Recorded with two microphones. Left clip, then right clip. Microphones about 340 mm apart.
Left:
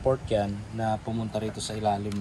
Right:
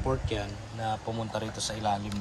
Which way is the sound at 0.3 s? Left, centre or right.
Centre.